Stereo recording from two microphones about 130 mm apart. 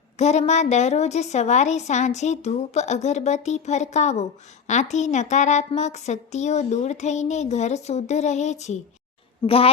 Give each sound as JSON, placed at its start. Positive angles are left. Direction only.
{"t": 0.2, "sound": "a woman's voice", "side_deg": 60}
{"t": 9.5, "sound": "a woman's voice", "side_deg": 45}